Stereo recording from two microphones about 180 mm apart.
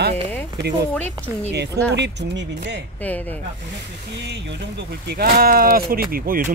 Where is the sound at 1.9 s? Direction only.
70° right (ahead or behind).